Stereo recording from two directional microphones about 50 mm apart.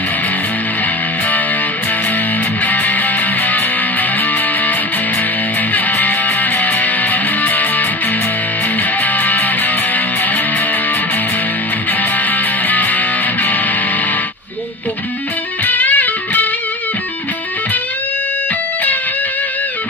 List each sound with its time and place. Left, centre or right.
2.6 s music: left
5.7 s music: left
9.0 s music: left
12.0 s music: left
15.6 s music: left